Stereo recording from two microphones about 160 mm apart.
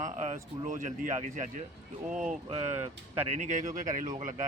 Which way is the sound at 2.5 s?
40° right (ahead or behind).